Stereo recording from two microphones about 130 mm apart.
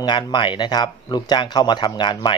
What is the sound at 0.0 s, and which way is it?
Speech, 35° left (ahead or behind).